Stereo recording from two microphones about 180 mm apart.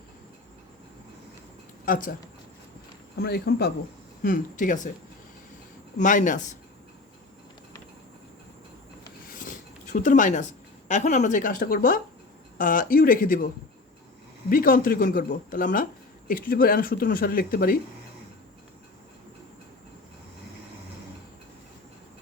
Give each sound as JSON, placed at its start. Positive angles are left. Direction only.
{"t": 1.8, "sound": "speech", "side_deg": 50}
{"t": 3.2, "sound": "speech", "side_deg": 60}
{"t": 4.2, "sound": "a woman's voice", "side_deg": 50}
{"t": 6.0, "sound": "a woman's voice", "side_deg": 45}
{"t": 9.3, "sound": "cutlery", "side_deg": 50}
{"t": 10.8, "sound": "a woman's voice", "side_deg": 40}
{"t": 14.5, "sound": "a woman's voice", "side_deg": 50}